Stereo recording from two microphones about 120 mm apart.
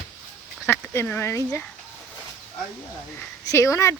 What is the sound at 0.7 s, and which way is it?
Speech, 20° left (ahead or behind).